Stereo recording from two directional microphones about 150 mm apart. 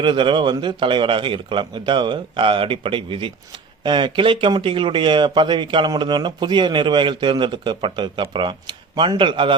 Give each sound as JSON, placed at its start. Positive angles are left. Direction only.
{"t": 0.0, "sound": "speech", "side_deg": -35}